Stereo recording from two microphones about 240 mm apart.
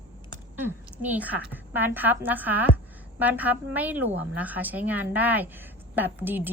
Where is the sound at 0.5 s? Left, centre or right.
Centre.